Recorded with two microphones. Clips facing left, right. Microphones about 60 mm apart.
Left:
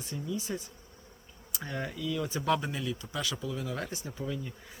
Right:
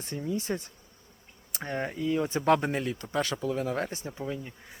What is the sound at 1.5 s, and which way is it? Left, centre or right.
Speech, right.